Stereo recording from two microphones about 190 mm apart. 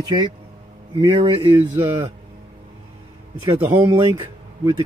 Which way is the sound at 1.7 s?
10° right (ahead or behind).